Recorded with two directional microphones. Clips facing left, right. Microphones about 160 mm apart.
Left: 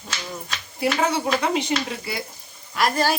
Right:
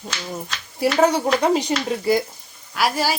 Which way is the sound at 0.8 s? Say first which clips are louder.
Right 5 dB; 40° right (ahead or behind).